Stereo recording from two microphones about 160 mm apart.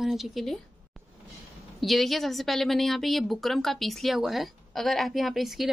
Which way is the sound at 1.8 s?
Centre (ahead or behind).